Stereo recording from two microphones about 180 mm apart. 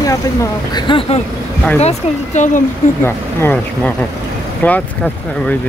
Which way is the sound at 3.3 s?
10° left (ahead or behind).